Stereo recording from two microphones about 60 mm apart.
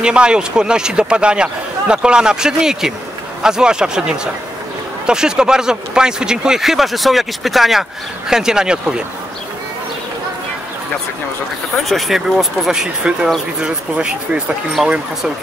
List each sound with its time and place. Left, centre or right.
0.0 s speech: centre
11.9 s speech: centre